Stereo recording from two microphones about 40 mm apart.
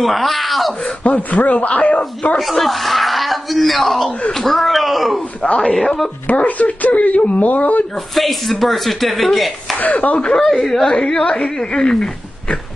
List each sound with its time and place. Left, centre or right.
0.0 s speech: centre
1.0 s speech: left
2.3 s speech: centre
5.6 s speech: centre
6.2 s speech: left
8.1 s speech: centre
9.9 s speech: left
10.5 s speech: centre